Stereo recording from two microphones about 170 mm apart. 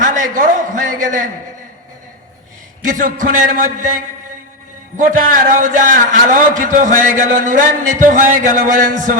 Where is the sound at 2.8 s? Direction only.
50° right (ahead or behind).